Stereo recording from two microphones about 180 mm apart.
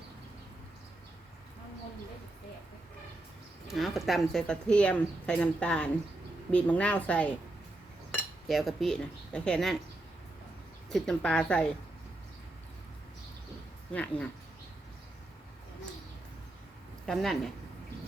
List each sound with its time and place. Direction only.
3.7 s a woman's voice: centre (ahead or behind)
8.4 s speech: centre (ahead or behind)
10.9 s speech: 5° left (ahead or behind)
13.9 s a woman's voice: 5° left (ahead or behind)
17.1 s speech: centre (ahead or behind)